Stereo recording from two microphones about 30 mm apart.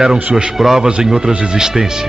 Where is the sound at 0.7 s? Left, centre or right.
Right.